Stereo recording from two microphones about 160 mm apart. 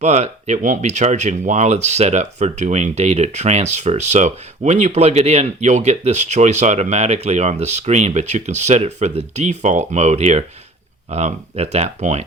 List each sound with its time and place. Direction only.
0.0 s speech: 45° right (ahead or behind)